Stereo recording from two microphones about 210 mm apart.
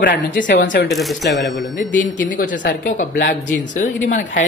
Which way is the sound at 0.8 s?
Centre (ahead or behind).